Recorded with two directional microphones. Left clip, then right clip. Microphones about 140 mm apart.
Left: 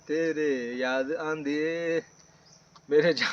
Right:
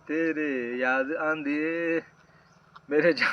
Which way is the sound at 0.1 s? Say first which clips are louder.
Left 1 dB; 55° left (ahead or behind).